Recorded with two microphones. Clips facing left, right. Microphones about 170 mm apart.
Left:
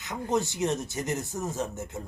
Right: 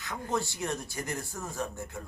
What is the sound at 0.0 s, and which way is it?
Speech, 20° left (ahead or behind).